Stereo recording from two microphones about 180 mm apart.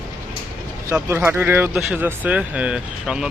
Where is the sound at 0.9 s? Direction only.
15° right (ahead or behind).